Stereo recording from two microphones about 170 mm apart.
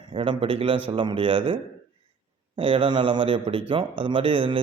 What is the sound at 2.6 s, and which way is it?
Speech, 30° right (ahead or behind).